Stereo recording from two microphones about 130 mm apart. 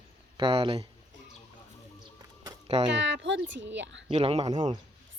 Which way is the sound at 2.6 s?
50° right (ahead or behind).